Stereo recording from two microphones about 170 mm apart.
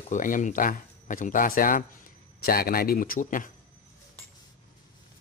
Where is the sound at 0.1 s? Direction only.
50° left (ahead or behind).